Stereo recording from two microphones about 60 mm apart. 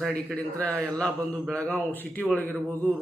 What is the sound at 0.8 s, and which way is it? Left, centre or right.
Speech, left.